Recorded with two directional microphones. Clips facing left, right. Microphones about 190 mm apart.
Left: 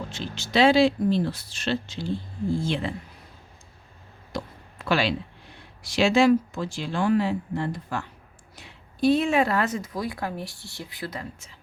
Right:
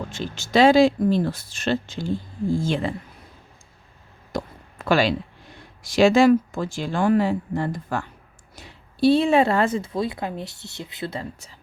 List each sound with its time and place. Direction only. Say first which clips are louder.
0.1 s speech: right 5 dB; 50° right (ahead or behind)
4.3 s a sound: right 4 dB; 45° right (ahead or behind)
5.9 s speech: right 4 dB; 45° right (ahead or behind)
8.5 s a woman's voice: right 6 dB; 35° right (ahead or behind)